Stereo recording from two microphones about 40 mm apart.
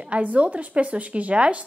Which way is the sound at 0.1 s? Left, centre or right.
Right.